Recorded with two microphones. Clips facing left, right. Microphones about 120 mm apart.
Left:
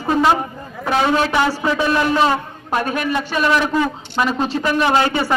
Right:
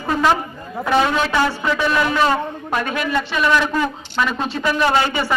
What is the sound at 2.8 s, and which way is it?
Speech, 40° left (ahead or behind).